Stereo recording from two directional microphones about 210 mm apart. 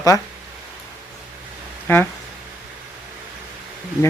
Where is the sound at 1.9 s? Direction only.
10° left (ahead or behind).